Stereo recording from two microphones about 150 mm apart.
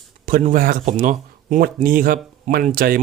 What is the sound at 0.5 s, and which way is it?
Speech, 65° right (ahead or behind).